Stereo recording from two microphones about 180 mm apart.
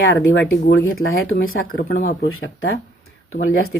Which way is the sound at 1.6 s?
55° left (ahead or behind).